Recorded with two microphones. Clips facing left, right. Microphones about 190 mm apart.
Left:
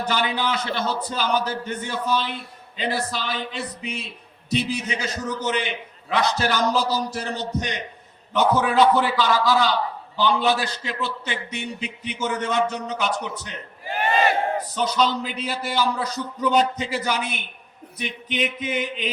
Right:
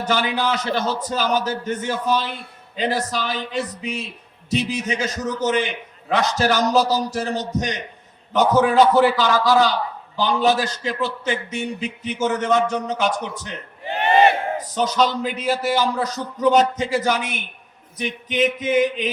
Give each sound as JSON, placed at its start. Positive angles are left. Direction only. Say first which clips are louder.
{"t": 0.0, "sound": "a man's voice", "louder": "right 3 dB", "side_deg": -40}
{"t": 14.8, "sound": "a man's voice", "louder": "right 3 dB", "side_deg": -45}